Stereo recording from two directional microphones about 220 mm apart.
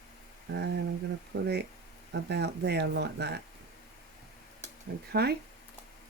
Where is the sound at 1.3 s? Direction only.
55° right (ahead or behind).